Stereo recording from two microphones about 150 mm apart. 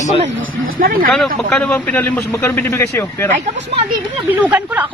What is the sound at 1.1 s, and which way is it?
A man's voice, 5° left (ahead or behind).